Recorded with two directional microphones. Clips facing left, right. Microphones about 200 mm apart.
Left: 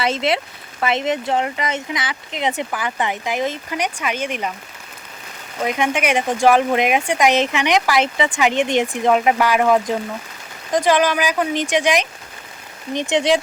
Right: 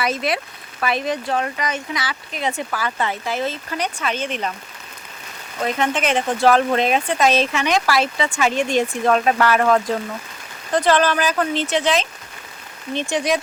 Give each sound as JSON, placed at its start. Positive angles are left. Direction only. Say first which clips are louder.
{"t": 0.0, "sound": "speech", "louder": "left 2 dB", "side_deg": 25}
{"t": 5.6, "sound": "speech", "louder": "left 1 dB", "side_deg": 15}